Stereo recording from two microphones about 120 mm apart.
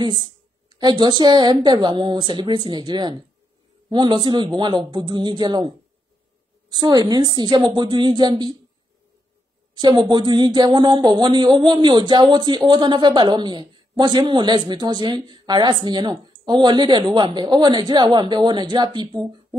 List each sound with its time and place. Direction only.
0.0 s speech: 35° right (ahead or behind)
6.7 s speech: 35° right (ahead or behind)
9.8 s speech: 35° right (ahead or behind)